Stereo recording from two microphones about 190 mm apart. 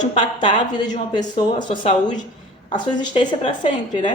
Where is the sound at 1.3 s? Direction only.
25° left (ahead or behind).